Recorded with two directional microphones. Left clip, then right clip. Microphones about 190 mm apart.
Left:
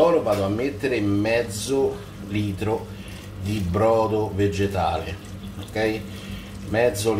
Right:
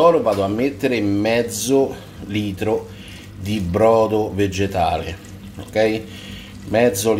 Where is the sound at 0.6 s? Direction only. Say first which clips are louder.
Right 4 dB; 45° right (ahead or behind).